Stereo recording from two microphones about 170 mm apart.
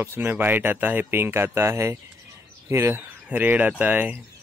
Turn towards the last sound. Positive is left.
turn(degrees=-10)  # may be behind; listen again after turning